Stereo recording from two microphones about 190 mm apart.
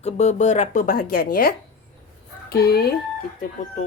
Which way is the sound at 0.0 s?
35° left (ahead or behind).